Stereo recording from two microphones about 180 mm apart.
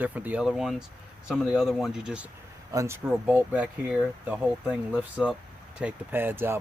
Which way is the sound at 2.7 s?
15° right (ahead or behind).